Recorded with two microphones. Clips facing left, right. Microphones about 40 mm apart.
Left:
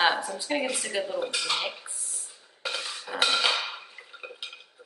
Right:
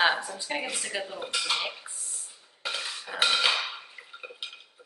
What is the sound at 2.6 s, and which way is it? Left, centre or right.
Cutlery, centre.